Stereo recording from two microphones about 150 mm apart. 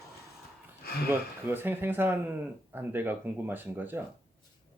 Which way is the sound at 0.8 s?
90° left.